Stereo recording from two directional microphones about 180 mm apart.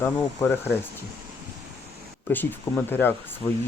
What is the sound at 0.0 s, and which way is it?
Speech, 10° left (ahead or behind).